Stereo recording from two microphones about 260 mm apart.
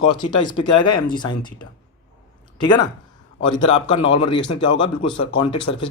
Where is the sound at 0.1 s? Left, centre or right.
Centre.